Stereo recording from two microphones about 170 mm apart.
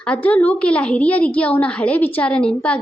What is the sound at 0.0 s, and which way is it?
A woman's voice, 5° left (ahead or behind).